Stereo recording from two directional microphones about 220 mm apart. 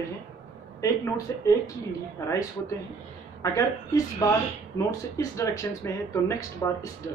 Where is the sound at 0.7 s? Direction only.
15° left (ahead or behind).